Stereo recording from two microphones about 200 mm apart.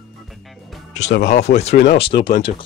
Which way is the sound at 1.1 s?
55° left (ahead or behind).